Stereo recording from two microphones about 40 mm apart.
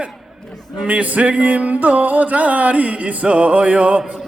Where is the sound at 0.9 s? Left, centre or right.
Right.